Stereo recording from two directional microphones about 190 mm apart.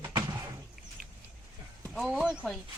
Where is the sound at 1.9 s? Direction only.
Centre (ahead or behind).